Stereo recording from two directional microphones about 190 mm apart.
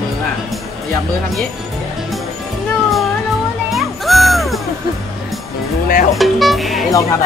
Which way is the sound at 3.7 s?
Centre (ahead or behind).